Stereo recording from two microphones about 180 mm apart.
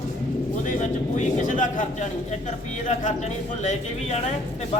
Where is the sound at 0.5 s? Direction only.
45° left (ahead or behind).